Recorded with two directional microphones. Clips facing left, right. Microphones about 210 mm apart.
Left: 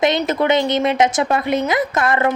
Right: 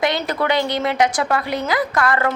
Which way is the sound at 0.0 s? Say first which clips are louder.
Left 4 dB; 20° left (ahead or behind).